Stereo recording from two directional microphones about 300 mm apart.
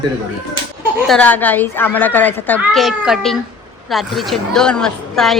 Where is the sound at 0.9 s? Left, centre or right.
Centre.